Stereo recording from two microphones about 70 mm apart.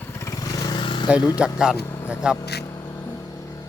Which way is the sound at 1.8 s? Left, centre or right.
Left.